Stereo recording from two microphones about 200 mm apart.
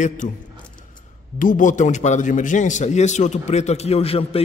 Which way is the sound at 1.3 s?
40° left (ahead or behind).